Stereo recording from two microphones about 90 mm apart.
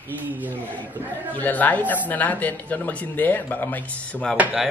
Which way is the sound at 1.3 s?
20° left (ahead or behind).